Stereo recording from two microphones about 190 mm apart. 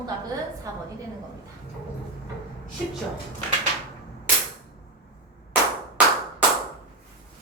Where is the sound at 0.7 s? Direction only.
20° right (ahead or behind).